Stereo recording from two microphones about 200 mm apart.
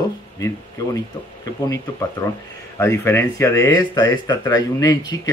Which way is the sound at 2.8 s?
15° left (ahead or behind).